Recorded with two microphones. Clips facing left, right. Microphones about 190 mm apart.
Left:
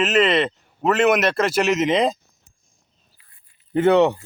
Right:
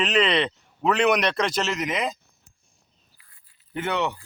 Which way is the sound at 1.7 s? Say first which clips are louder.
Left 9 dB; 25° left (ahead or behind).